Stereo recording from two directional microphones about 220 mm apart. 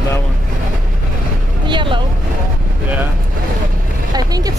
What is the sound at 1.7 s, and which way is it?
Vehicle, 20° right (ahead or behind).